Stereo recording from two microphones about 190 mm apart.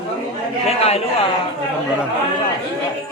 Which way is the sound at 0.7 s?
30° left (ahead or behind).